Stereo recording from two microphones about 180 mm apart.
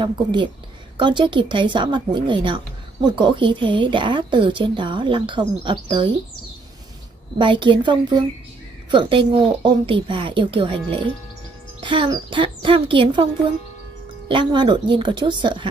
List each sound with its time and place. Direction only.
0.0 s speech: 25° right (ahead or behind)
7.3 s speech: 25° right (ahead or behind)
9.3 s speech: 30° right (ahead or behind)
14.3 s speech: 25° right (ahead or behind)